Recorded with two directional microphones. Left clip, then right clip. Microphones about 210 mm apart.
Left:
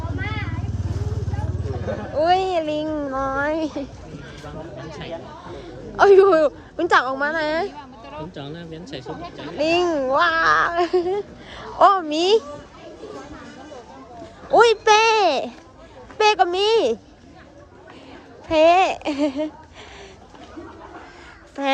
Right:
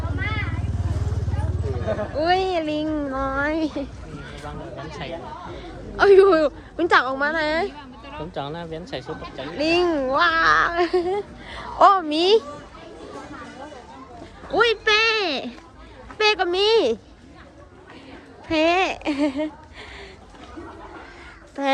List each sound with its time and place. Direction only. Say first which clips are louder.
0.2 s vehicle: right 3 dB; 40° left (ahead or behind)
2.1 s speech: left 3 dB; 15° left (ahead or behind)
5.5 s speech: left 3 dB; 20° left (ahead or behind)
7.7 s a sound: left 1 dB; 30° left (ahead or behind)
8.3 s speech: right 5 dB; 25° right (ahead or behind)
9.6 s speech: left 1 dB; 15° left (ahead or behind)
14.5 s speech: left 5 dB; 25° left (ahead or behind)
18.4 s speech: left 5 dB; 15° left (ahead or behind)
21.6 s speech: even; 10° left (ahead or behind)